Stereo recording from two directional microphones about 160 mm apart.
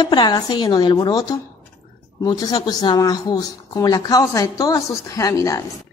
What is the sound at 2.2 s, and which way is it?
Speech, 25° left (ahead or behind).